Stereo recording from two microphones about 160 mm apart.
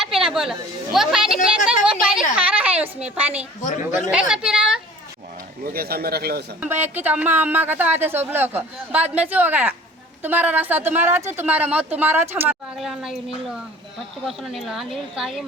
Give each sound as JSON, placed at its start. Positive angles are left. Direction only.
{"t": 0.0, "sound": "chatter", "side_deg": -5}
{"t": 0.9, "sound": "a woman's voice", "side_deg": -5}
{"t": 5.6, "sound": "a man's voice", "side_deg": -70}
{"t": 6.6, "sound": "speech", "side_deg": -15}
{"t": 12.7, "sound": "speech", "side_deg": 0}